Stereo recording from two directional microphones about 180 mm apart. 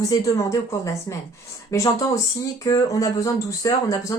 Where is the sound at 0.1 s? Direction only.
15° left (ahead or behind).